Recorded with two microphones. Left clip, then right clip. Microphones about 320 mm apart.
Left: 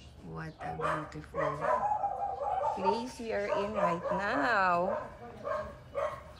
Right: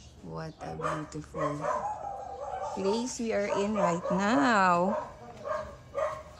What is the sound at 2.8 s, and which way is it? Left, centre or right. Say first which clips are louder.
A woman's voice: right 1 dB; right.